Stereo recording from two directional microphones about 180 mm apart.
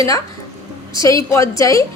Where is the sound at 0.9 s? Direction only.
20° left (ahead or behind).